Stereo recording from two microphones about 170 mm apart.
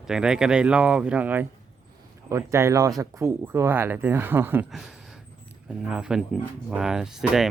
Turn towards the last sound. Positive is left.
turn(degrees=-5)  # may be behind; listen again after turning